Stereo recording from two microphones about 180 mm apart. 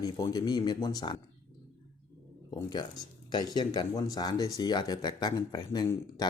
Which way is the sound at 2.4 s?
25° left (ahead or behind).